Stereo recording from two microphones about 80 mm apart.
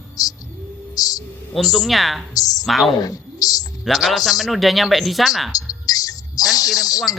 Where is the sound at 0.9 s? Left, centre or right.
Left.